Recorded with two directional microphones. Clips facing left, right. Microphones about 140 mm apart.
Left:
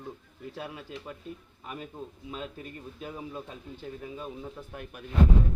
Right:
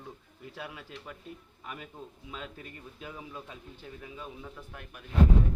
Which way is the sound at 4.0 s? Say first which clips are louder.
Left 3 dB; 30° left (ahead or behind).